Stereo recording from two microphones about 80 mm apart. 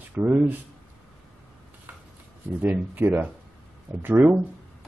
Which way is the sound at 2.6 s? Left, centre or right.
Right.